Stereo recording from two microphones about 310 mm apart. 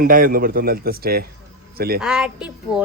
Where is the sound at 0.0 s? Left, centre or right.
Right.